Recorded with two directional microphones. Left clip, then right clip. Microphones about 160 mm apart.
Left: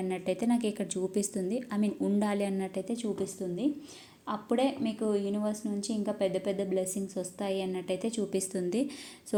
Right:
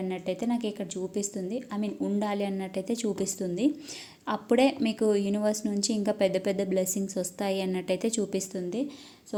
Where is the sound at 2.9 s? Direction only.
35° right (ahead or behind).